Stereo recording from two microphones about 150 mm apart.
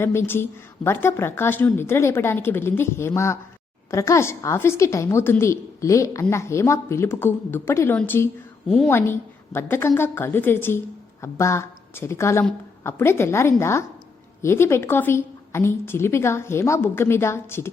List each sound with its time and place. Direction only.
0.9 s a woman's voice: 15° left (ahead or behind)
8.9 s a woman's voice: 15° left (ahead or behind)